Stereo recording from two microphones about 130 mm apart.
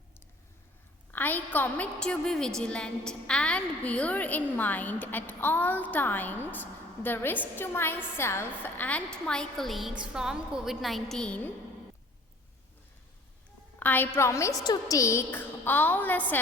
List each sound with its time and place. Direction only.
1.1 s a woman's voice: 15° left (ahead or behind)
13.7 s a woman's voice: 15° left (ahead or behind)